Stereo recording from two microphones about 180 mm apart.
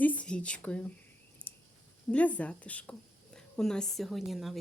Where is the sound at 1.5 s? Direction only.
10° left (ahead or behind).